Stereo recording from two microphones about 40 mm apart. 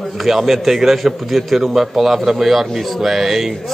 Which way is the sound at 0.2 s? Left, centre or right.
Centre.